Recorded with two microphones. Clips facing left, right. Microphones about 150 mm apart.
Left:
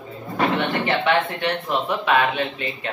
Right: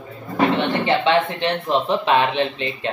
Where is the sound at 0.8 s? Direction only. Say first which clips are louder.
Right 4 dB; 25° right (ahead or behind).